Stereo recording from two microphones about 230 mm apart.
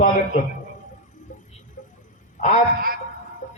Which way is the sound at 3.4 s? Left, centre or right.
Left.